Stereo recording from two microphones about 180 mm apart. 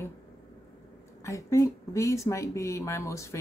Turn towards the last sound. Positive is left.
turn(degrees=15)  # may be behind; listen again after turning